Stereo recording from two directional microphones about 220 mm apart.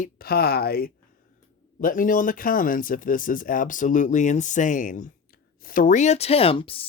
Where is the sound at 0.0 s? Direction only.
45° left (ahead or behind).